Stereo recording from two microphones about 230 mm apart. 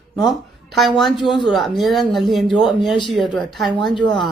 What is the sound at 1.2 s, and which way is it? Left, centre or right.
Speech, centre.